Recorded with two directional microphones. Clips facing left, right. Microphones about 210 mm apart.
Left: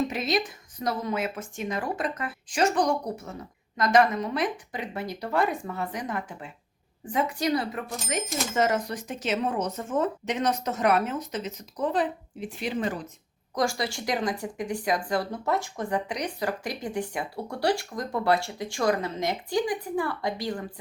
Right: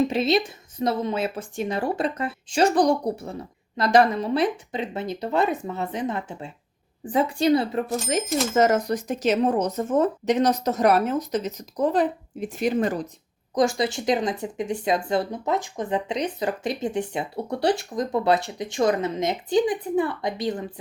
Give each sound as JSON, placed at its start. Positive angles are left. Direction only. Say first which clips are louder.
{"t": 0.1, "sound": "speech", "louder": "right 6 dB", "side_deg": -30}
{"t": 13.5, "sound": "speech", "louder": "right 6 dB", "side_deg": -20}